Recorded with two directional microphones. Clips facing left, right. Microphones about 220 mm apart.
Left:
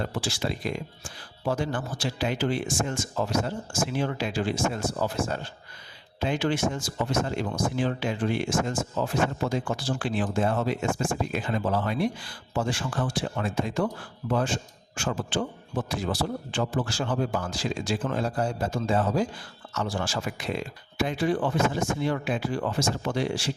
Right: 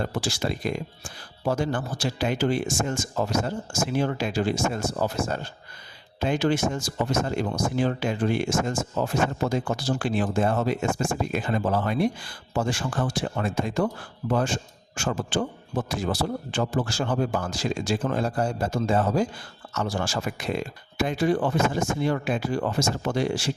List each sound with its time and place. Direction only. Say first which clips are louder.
0.0 s speech: right 2 dB; 45° right (ahead or behind)